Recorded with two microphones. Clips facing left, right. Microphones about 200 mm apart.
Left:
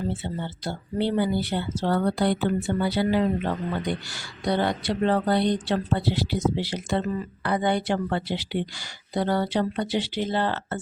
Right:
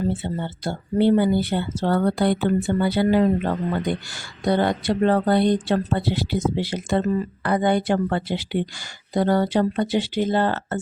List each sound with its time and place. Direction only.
0.0 s speech: 50° right (ahead or behind)